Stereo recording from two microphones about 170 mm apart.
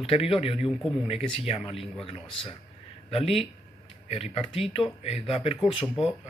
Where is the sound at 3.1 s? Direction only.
35° left (ahead or behind).